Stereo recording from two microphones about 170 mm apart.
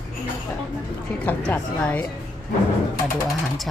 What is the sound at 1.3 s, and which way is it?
Speech, 10° left (ahead or behind).